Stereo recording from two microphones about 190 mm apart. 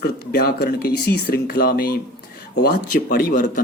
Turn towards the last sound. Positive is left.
turn(degrees=45)  # may be behind; listen again after turning